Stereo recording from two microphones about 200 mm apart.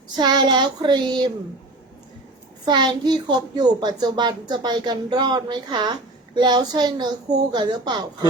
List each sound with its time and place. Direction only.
0.2 s speech: 20° right (ahead or behind)
2.6 s speech: 20° right (ahead or behind)